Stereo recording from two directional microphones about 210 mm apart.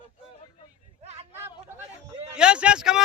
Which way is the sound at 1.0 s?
30° right (ahead or behind).